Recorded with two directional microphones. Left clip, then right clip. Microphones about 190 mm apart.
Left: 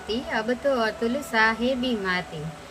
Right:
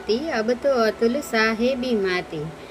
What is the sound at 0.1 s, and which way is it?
Speech, 20° right (ahead or behind).